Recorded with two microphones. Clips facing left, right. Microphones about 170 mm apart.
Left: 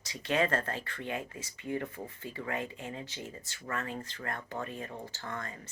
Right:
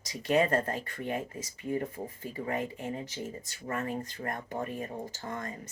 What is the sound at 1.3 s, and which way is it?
Speech, 35° right (ahead or behind).